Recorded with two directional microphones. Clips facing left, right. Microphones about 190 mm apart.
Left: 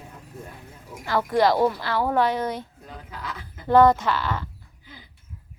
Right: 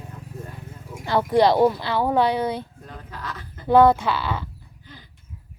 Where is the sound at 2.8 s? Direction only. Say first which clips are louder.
Right 1 dB; 10° left (ahead or behind).